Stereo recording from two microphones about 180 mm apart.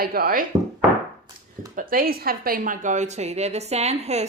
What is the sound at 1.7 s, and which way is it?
A woman's voice, 50° right (ahead or behind).